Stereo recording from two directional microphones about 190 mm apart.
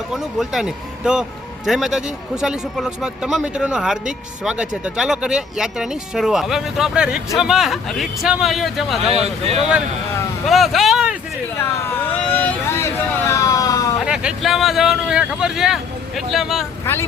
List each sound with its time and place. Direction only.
0.1 s speech: centre (ahead or behind)
9.2 s speech: 35° right (ahead or behind)
10.4 s speech: centre (ahead or behind)
11.8 s vehicle: 10° left (ahead or behind)
14.0 s speech: 5° right (ahead or behind)
16.8 s speech: 15° left (ahead or behind)